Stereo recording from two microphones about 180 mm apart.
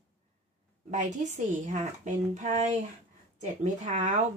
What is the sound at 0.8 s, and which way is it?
Speech, 45° right (ahead or behind).